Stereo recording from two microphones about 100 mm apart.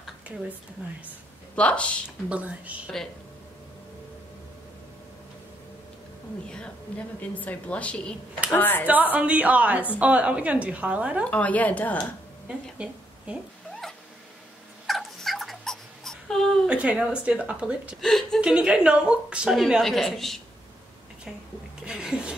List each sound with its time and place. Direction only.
1.0 s speech: 15° left (ahead or behind)
2.0 s a woman's voice: 15° right (ahead or behind)
7.2 s a woman's voice: 15° left (ahead or behind)
8.8 s a woman's voice: 15° right (ahead or behind)
11.2 s a woman's voice: 15° left (ahead or behind)
12.7 s a sound: 10° right (ahead or behind)
14.9 s whimper: centre (ahead or behind)
16.6 s a woman's voice: 10° right (ahead or behind)
18.0 s speech: 5° left (ahead or behind)
18.4 s a woman's voice: 10° right (ahead or behind)
21.8 s speech: 5° right (ahead or behind)